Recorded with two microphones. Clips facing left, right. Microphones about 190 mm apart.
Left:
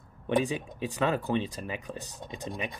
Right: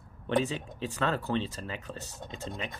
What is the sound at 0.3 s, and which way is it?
Speech, 15° left (ahead or behind).